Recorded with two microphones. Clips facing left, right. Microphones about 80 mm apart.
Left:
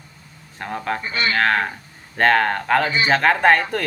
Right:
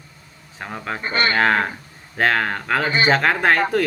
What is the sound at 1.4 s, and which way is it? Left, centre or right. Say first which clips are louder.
Speech: right 1 dB; centre.